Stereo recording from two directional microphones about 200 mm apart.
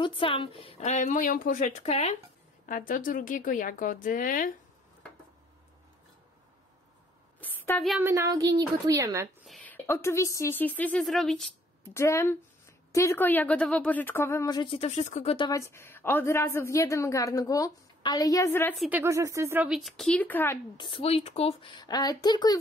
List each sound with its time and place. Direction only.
0.0 s speech: 25° left (ahead or behind)
2.6 s a woman's voice: 45° left (ahead or behind)
7.3 s a sound: 10° left (ahead or behind)
8.0 s speech: 15° right (ahead or behind)
9.5 s speech: 5° left (ahead or behind)
11.9 s a woman's voice: 15° left (ahead or behind)
18.8 s speech: 10° right (ahead or behind); by 20.5 s 10° left (ahead or behind)
20.7 s speech: 25° left (ahead or behind)